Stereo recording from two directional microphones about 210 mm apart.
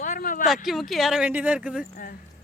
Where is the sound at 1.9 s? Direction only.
45° left (ahead or behind).